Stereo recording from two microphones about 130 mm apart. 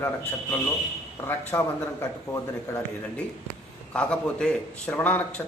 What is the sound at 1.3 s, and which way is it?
A man's voice, 20° left (ahead or behind).